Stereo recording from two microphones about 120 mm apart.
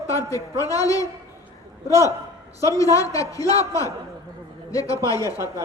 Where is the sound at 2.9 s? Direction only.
30° left (ahead or behind).